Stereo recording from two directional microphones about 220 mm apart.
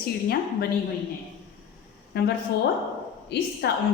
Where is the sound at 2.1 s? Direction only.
45° left (ahead or behind).